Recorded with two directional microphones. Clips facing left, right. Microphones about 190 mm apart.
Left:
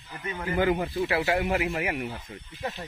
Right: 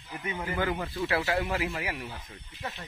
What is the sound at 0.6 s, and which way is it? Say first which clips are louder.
Speech: left 7 dB; 20° left (ahead or behind).